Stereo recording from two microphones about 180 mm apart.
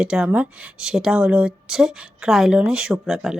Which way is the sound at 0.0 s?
5° right (ahead or behind).